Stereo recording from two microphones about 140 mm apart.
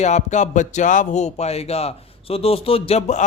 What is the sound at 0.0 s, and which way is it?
Speech, 55° left (ahead or behind).